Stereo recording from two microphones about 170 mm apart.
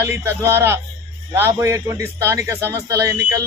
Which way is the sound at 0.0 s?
15° right (ahead or behind).